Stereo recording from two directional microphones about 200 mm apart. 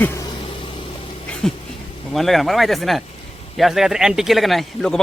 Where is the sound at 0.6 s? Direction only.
25° left (ahead or behind).